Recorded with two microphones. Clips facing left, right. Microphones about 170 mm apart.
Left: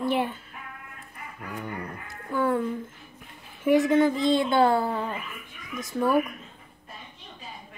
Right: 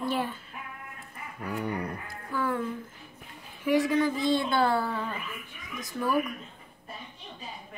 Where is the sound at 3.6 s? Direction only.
25° left (ahead or behind).